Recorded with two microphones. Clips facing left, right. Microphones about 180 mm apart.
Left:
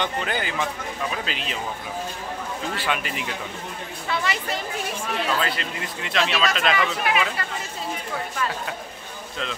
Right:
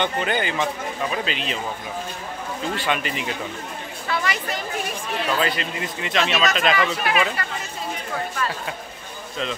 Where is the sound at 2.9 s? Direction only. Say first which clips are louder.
Right 2 dB; 5° left (ahead or behind).